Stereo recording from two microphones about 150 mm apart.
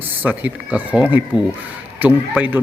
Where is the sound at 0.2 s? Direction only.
10° right (ahead or behind).